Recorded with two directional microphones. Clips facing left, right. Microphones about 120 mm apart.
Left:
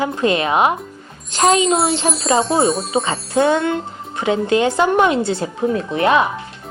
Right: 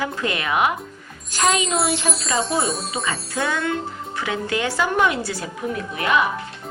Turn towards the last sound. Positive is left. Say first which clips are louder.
# left 6 dB
turn(degrees=30)  # may be behind; listen again after turning